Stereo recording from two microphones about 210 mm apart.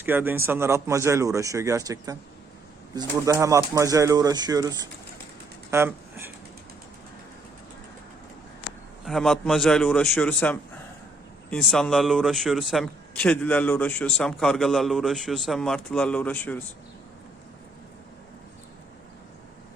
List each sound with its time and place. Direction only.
0.0 s speech: 10° right (ahead or behind)
9.0 s a man's voice: centre (ahead or behind)